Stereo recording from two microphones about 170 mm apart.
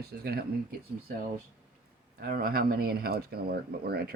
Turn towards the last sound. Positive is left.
turn(degrees=-65)  # may be behind; listen again after turning